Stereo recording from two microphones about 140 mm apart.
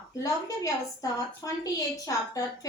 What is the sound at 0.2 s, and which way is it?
A woman's voice, 25° left (ahead or behind).